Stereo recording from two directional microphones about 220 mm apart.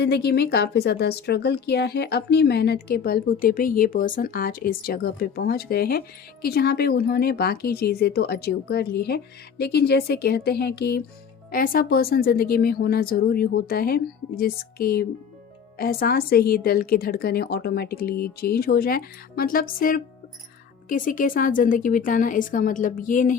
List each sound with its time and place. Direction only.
0.0 s a woman's voice: 50° left (ahead or behind)